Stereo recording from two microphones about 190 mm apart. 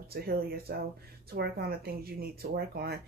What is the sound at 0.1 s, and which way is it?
Speech, 55° right (ahead or behind).